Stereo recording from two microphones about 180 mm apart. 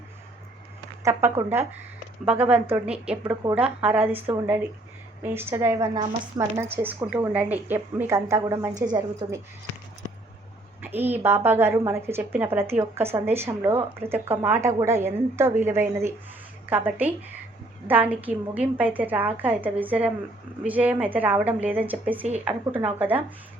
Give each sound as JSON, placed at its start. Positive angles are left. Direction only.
{"t": 1.0, "sound": "a woman's voice", "side_deg": -15}
{"t": 5.2, "sound": "a woman's voice", "side_deg": -15}
{"t": 10.8, "sound": "a woman's voice", "side_deg": -10}